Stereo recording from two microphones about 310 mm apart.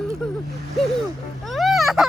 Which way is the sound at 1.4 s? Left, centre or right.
Centre.